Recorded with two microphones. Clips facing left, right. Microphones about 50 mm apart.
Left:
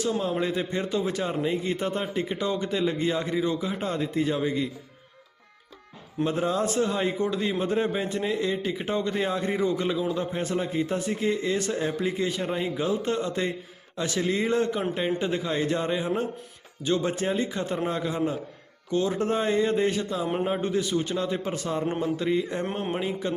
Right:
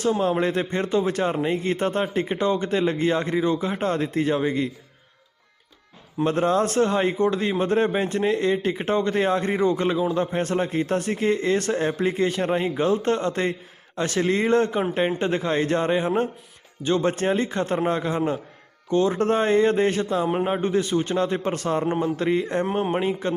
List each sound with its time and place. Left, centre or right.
0.0 s a man's voice: right
6.2 s a man's voice: right
20.2 s a man's voice: right
20.5 s a man's voice: right
22.9 s a man's voice: right